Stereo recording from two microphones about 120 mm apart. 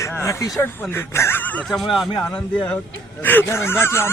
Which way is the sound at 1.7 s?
Centre (ahead or behind).